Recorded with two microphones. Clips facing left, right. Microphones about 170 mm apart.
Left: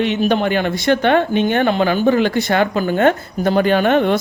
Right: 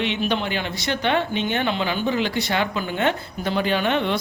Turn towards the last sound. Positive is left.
turn(degrees=50)  # may be behind; listen again after turning